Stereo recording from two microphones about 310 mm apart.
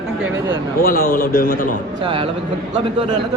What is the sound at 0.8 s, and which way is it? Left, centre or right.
Speech, left.